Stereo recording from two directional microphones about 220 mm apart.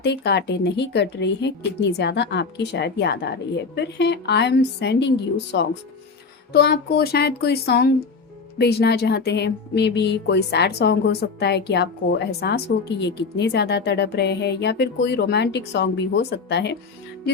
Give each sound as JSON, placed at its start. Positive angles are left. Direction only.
{"t": 0.0, "sound": "speech", "side_deg": 50}